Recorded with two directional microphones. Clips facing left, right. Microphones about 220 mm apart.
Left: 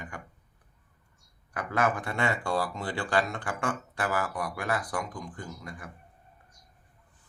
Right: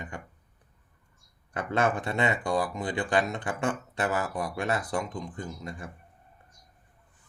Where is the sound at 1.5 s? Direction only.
25° right (ahead or behind).